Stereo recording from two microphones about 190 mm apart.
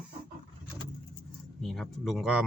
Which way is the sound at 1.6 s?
Centre (ahead or behind).